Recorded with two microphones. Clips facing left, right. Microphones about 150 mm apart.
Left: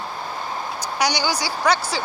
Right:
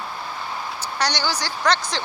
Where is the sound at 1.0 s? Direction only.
10° left (ahead or behind).